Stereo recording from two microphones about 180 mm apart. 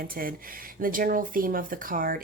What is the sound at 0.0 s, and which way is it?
Speech, 50° right (ahead or behind).